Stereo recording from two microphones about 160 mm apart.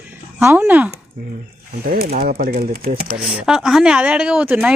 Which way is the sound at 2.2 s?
65° right (ahead or behind).